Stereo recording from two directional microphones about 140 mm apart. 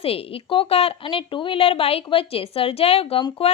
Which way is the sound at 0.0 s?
45° left (ahead or behind).